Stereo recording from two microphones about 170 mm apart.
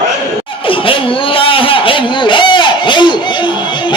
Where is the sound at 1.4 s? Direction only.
30° left (ahead or behind).